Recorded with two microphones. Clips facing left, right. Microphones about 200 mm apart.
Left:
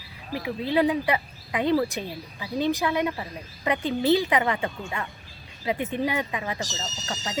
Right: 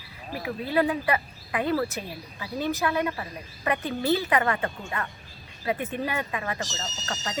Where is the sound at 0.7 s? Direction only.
15° left (ahead or behind).